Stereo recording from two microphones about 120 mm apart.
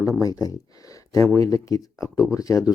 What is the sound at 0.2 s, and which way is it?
Speech, 30° left (ahead or behind).